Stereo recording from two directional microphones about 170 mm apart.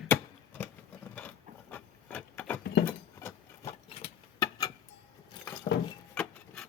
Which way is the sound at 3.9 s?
35° left (ahead or behind).